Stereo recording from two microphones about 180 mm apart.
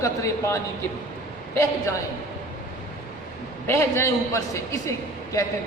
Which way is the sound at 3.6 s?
15° left (ahead or behind).